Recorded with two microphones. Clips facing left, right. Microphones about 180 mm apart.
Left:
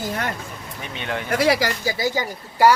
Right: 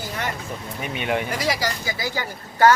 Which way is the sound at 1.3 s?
65° left (ahead or behind).